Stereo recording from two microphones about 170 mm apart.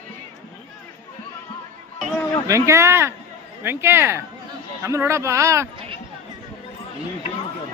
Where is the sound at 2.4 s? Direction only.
15° right (ahead or behind).